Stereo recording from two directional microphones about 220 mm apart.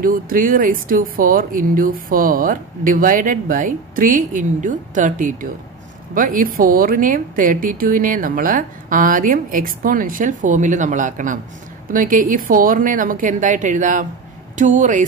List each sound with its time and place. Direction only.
0.0 s speech: 40° right (ahead or behind)